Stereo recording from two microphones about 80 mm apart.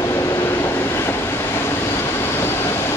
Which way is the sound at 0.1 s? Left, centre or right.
Left.